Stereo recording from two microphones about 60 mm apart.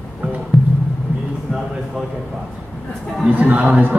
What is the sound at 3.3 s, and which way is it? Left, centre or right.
Speech, right.